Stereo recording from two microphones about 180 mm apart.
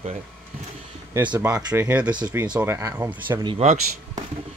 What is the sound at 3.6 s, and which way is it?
Speech, 40° right (ahead or behind).